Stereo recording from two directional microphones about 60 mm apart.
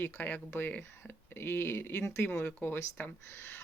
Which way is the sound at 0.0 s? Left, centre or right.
Left.